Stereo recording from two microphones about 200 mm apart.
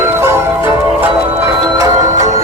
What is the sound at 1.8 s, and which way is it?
Music, 15° right (ahead or behind).